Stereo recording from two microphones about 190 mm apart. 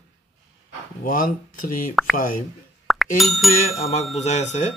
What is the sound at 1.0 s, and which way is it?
Speech, 45° left (ahead or behind).